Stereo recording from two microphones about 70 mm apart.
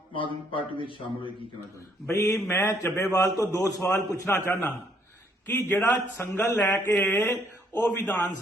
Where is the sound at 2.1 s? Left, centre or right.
Left.